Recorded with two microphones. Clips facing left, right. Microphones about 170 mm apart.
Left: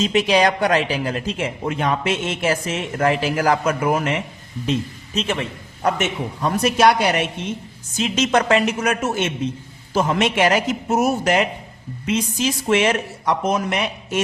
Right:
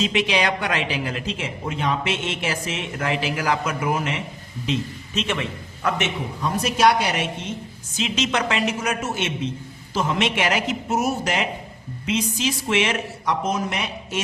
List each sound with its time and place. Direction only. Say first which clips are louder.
0.0 s a man's voice: left 5 dB; 40° left (ahead or behind)
6.4 s a man's voice: left 3 dB; 60° left (ahead or behind)
7.9 s speech: left 5 dB; 45° left (ahead or behind)